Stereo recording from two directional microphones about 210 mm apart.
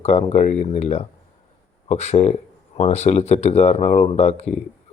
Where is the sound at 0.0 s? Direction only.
30° left (ahead or behind).